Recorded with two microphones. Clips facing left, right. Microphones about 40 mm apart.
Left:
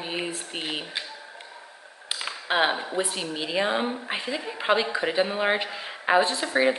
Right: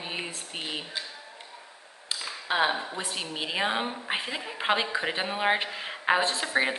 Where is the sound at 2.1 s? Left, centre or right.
Left.